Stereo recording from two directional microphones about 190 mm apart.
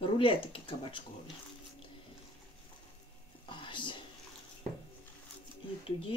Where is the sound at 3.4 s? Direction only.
25° left (ahead or behind).